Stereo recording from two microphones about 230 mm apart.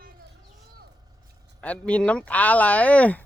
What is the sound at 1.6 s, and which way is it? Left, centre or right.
Speech, centre.